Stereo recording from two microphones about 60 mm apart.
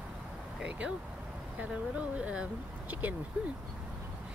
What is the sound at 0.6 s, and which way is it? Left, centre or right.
Speech, right.